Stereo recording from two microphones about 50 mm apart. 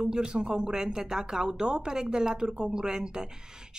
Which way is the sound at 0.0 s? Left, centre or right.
Centre.